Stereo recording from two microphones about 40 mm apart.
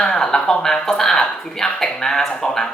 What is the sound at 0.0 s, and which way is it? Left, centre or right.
Speech, centre.